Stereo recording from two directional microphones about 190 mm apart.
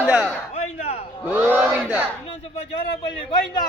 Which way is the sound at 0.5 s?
35° left (ahead or behind).